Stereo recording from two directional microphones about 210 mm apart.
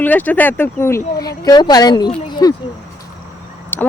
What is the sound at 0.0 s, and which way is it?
Speech, 10° left (ahead or behind).